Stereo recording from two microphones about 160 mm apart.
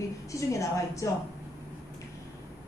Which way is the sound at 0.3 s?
20° left (ahead or behind).